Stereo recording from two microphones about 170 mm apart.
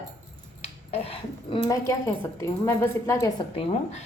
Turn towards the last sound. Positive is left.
turn(degrees=40)  # may be behind; listen again after turning